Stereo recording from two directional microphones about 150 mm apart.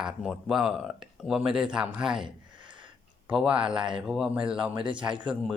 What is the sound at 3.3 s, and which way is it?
Speech, 5° right (ahead or behind).